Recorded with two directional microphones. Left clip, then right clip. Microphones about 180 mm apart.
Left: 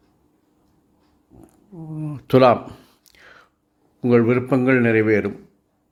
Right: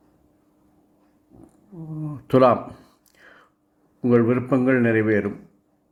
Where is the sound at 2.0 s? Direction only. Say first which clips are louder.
Left 2 dB; 25° left (ahead or behind).